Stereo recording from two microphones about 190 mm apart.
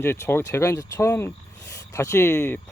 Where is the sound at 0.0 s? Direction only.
10° left (ahead or behind).